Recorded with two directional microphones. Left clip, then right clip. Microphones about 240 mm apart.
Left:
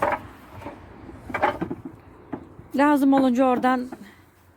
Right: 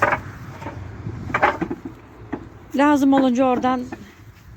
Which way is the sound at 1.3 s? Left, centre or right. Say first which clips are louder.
Right 5 dB; centre.